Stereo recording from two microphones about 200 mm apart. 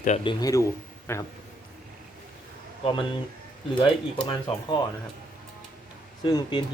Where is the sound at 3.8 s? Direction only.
25° left (ahead or behind).